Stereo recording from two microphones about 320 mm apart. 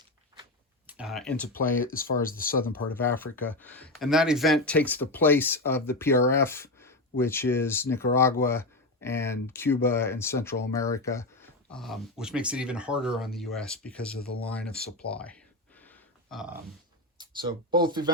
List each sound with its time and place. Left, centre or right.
0.9 s speech: centre
1.5 s speech: left
2.9 s speech: centre
14.4 s a sound: centre
17.2 s speech: centre